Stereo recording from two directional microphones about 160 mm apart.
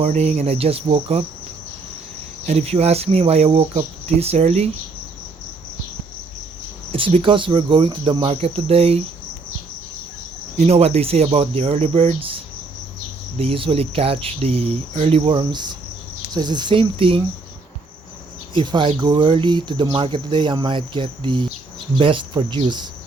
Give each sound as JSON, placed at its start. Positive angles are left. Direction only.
{"t": 0.0, "sound": "speech", "side_deg": -45}
{"t": 2.5, "sound": "speech", "side_deg": -40}
{"t": 6.9, "sound": "speech", "side_deg": -35}
{"t": 10.6, "sound": "speech", "side_deg": -40}
{"t": 13.4, "sound": "speech", "side_deg": -35}
{"t": 18.5, "sound": "speech", "side_deg": -30}